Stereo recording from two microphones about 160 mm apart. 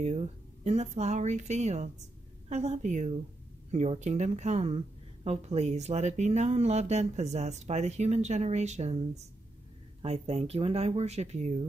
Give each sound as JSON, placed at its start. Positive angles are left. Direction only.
{"t": 0.7, "sound": "speech", "side_deg": -45}